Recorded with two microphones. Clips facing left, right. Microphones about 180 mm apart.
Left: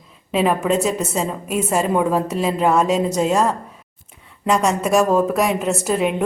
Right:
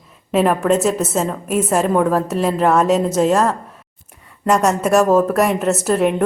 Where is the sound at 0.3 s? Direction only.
Centre (ahead or behind).